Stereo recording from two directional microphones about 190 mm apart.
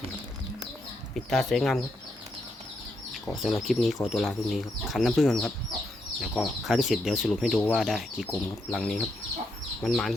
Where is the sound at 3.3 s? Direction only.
Centre (ahead or behind).